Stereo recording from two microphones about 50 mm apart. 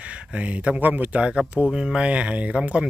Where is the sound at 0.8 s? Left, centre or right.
Right.